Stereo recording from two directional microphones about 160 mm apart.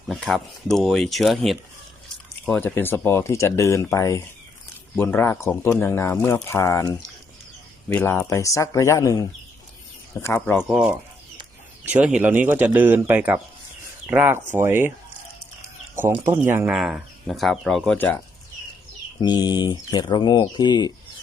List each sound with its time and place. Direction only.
0.1 s speech: centre (ahead or behind)
2.5 s speech: 10° left (ahead or behind)
7.9 s speech: 15° left (ahead or behind)
11.9 s speech: 10° right (ahead or behind)
16.0 s speech: 15° right (ahead or behind)
17.9 s speech: 10° left (ahead or behind)
19.2 s speech: 25° left (ahead or behind)